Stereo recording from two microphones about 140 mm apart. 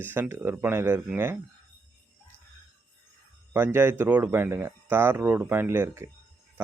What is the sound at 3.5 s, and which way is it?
Speech, 15° right (ahead or behind).